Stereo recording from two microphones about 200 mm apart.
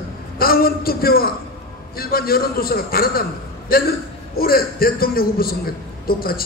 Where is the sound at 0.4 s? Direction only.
50° left (ahead or behind).